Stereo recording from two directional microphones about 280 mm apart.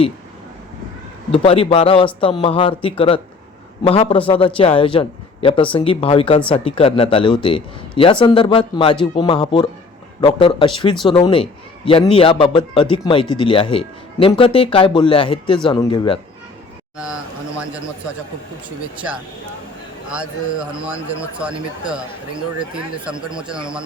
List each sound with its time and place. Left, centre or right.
1.3 s speech: left
17.0 s speech: centre
20.1 s speech: centre
23.3 s speech: centre